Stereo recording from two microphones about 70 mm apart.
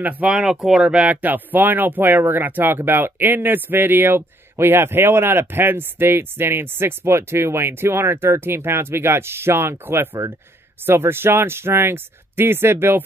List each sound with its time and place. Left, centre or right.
0.0 s speech: right
0.3 s speech: centre; by 13.0 s right